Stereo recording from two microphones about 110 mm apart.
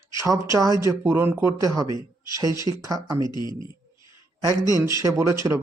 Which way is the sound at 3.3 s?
40° left (ahead or behind).